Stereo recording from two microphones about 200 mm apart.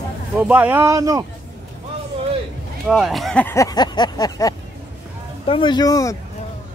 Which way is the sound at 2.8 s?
Centre (ahead or behind).